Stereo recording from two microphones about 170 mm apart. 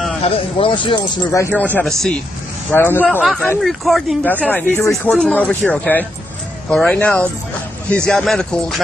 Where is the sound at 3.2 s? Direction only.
Centre (ahead or behind).